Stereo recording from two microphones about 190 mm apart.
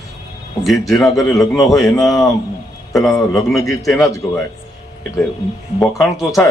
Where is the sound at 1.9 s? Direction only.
Centre (ahead or behind).